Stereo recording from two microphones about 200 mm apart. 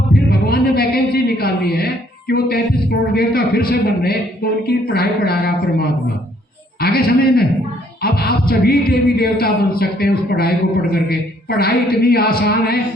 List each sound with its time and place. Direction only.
0.1 s a sound: 50° left (ahead or behind)
3.2 s speech: 50° left (ahead or behind)
6.8 s speech: 50° left (ahead or behind)